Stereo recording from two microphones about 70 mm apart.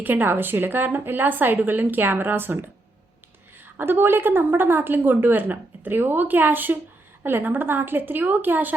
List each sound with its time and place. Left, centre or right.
0.0 s a woman's voice: right
3.8 s a woman's voice: right